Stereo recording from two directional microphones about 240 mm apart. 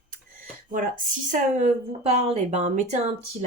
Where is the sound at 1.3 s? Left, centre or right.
Right.